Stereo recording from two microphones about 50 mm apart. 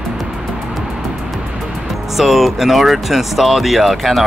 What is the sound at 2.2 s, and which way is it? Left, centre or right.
Speech, centre.